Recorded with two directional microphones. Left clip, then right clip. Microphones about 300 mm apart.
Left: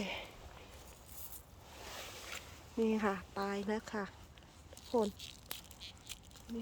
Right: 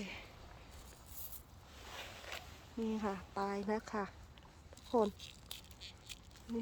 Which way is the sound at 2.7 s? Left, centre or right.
Centre.